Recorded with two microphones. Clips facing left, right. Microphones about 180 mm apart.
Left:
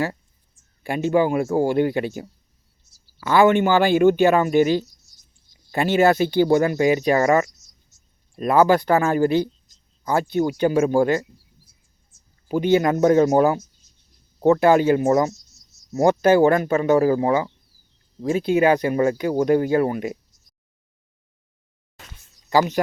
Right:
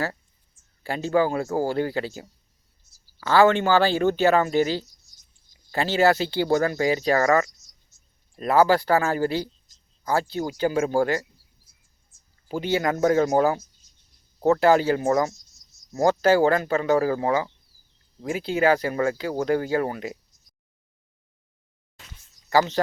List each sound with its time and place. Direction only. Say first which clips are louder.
0.8 s speech: left 3 dB; 15° left (ahead or behind)
3.2 s speech: left 2 dB; 15° left (ahead or behind)
12.5 s speech: left 6 dB; 20° left (ahead or behind)
22.4 s speech: left 2 dB; 15° left (ahead or behind)